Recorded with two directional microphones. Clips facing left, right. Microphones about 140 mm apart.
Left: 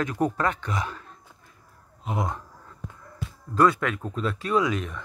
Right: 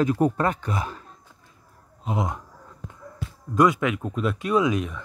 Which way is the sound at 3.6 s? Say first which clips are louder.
Right 1 dB; 15° right (ahead or behind).